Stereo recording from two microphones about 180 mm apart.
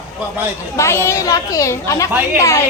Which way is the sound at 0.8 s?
15° left (ahead or behind).